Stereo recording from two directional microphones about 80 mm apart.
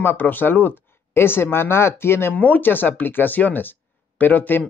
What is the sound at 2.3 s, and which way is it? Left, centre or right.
Speech, centre.